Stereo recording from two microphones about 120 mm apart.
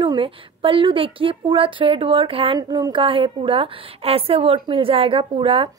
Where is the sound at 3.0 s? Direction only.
45° right (ahead or behind).